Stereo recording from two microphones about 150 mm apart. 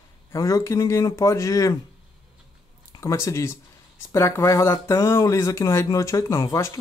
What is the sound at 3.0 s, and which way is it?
Speech, 20° left (ahead or behind).